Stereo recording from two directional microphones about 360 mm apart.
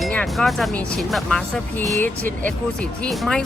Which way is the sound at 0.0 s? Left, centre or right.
Centre.